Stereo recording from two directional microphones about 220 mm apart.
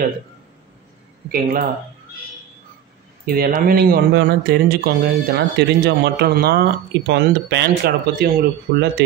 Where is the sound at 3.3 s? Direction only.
40° right (ahead or behind).